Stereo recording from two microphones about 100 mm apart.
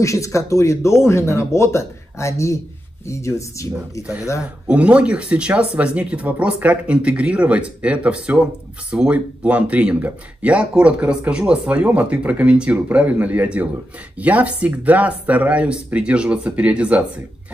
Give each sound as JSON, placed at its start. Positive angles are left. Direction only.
{"t": 0.0, "sound": "speech", "side_deg": 30}
{"t": 4.4, "sound": "speech", "side_deg": -10}